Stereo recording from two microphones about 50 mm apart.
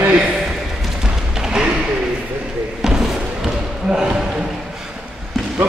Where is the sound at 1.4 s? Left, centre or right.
Centre.